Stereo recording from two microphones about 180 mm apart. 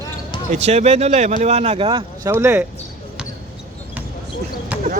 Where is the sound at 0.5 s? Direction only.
40° right (ahead or behind).